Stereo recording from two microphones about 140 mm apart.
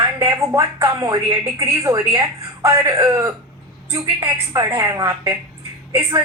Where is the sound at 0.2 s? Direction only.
20° right (ahead or behind).